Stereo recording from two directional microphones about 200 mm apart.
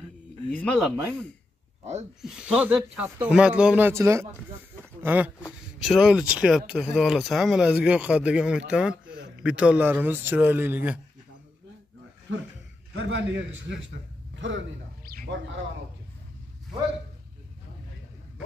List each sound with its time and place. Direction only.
0.5 s speech: 5° left (ahead or behind)
2.2 s speech: 5° right (ahead or behind)
12.3 s a man's voice: 70° right (ahead or behind)
15.0 s a sound: 50° right (ahead or behind)